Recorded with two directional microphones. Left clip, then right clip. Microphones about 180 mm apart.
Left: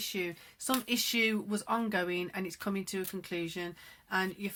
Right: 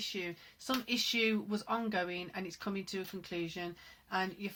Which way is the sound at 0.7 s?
35° left (ahead or behind).